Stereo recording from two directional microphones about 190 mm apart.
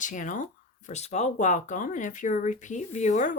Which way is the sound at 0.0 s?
40° left (ahead or behind).